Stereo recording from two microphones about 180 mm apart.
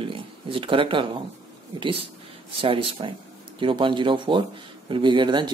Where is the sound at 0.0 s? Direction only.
30° right (ahead or behind).